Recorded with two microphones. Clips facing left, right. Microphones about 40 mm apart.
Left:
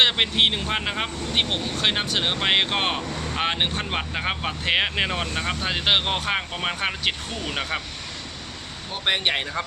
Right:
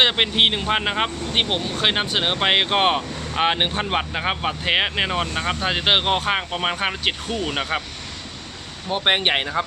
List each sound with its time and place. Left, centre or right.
0.0 s speech: centre
8.9 s speech: right